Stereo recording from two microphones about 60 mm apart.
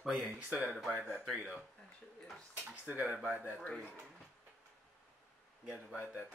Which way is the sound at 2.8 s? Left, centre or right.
Right.